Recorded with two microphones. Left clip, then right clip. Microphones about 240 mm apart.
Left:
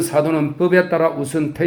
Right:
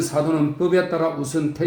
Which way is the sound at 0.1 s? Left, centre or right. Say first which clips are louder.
Left 4 dB; left.